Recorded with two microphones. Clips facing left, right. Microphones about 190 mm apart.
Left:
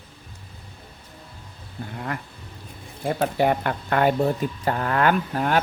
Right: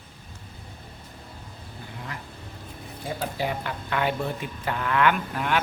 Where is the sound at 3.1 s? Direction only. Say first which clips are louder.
Left 8 dB; 60° left (ahead or behind).